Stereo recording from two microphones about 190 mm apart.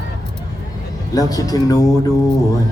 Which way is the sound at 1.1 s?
20° left (ahead or behind).